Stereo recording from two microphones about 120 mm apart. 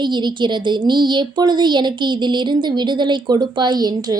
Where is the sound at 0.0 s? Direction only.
40° right (ahead or behind).